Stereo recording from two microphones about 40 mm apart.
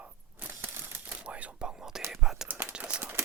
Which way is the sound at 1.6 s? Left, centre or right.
Centre.